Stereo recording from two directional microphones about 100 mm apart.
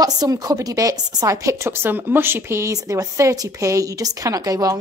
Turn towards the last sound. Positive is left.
turn(degrees=-35)  # may be behind; listen again after turning